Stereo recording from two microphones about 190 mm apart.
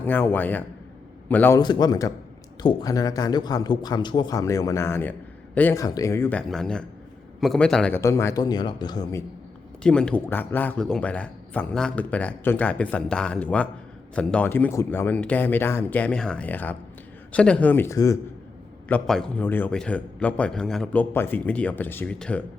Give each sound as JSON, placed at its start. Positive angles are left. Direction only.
{"t": 0.0, "sound": "a man's voice", "side_deg": 10}
{"t": 1.5, "sound": "a man's voice", "side_deg": 20}
{"t": 9.8, "sound": "a man's voice", "side_deg": 5}
{"t": 18.9, "sound": "a man's voice", "side_deg": 5}